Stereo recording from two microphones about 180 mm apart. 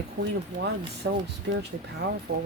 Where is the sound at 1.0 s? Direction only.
90° right.